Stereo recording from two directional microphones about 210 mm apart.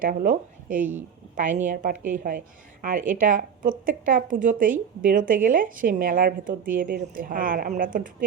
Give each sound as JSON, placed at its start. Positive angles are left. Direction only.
{"t": 0.0, "sound": "a woman's voice", "side_deg": -40}